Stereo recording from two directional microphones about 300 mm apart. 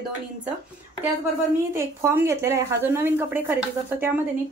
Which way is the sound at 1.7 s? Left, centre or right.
Centre.